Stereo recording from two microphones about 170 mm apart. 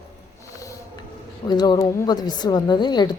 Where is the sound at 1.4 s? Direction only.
25° left (ahead or behind).